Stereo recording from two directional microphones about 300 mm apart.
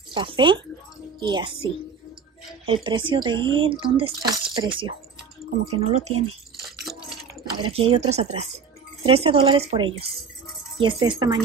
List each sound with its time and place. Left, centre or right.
0.1 s speech: centre
2.6 s speech: centre
6.8 s a sound: centre
7.4 s speech: centre